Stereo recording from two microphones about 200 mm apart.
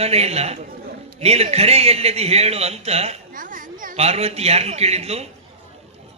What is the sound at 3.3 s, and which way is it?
A man's voice, 45° right (ahead or behind).